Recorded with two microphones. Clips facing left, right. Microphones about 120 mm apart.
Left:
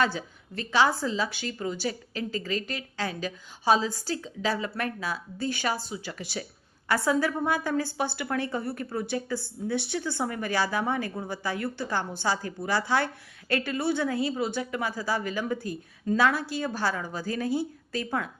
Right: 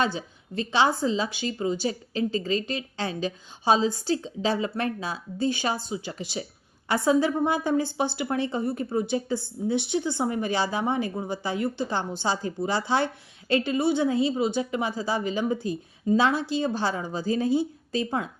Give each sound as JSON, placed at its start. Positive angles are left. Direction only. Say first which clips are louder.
{"t": 0.0, "sound": "a woman's voice", "louder": "even", "side_deg": -20}